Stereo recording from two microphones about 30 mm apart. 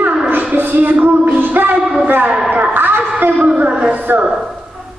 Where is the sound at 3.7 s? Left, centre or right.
Right.